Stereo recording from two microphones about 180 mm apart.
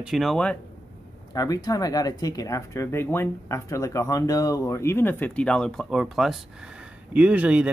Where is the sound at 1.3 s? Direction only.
20° left (ahead or behind).